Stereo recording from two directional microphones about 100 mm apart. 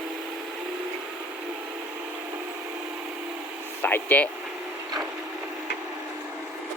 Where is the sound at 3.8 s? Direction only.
20° left (ahead or behind).